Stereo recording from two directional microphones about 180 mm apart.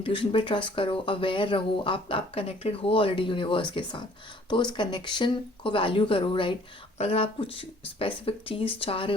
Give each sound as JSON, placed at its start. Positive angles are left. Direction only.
{"t": 0.0, "sound": "speech", "side_deg": 30}